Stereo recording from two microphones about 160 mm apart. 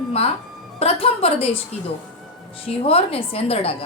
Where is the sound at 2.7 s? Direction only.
35° left (ahead or behind).